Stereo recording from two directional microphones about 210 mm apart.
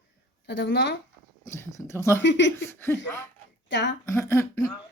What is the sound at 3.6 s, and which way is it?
Speech, 60° left (ahead or behind).